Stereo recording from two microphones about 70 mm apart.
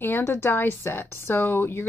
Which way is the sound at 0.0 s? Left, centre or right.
Left.